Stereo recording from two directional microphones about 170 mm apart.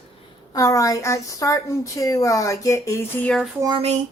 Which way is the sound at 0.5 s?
20° left (ahead or behind).